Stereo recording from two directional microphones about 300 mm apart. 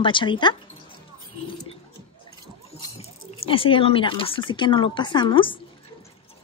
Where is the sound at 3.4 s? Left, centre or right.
Centre.